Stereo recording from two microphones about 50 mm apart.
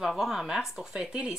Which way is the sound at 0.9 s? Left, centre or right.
Centre.